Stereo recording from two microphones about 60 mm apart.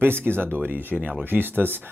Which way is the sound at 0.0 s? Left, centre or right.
Right.